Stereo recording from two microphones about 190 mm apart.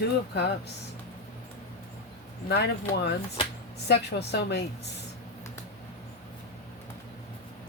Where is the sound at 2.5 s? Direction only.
60° left (ahead or behind).